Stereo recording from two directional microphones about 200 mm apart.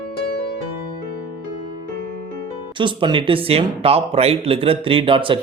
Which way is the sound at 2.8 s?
25° right (ahead or behind).